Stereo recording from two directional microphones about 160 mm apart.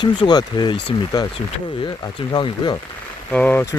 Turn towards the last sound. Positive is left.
turn(degrees=10)  # may be behind; listen again after turning